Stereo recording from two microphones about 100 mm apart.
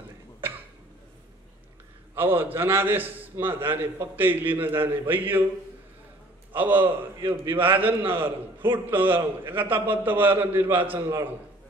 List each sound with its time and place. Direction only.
2.1 s a man's voice: 20° right (ahead or behind)
6.5 s a man's voice: 20° right (ahead or behind)